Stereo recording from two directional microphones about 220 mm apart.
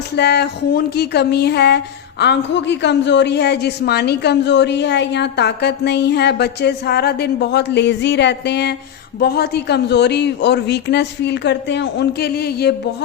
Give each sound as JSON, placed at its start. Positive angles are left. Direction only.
{"t": 0.2, "sound": "speech", "side_deg": 50}